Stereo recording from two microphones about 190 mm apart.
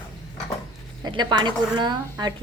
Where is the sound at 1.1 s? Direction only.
25° right (ahead or behind).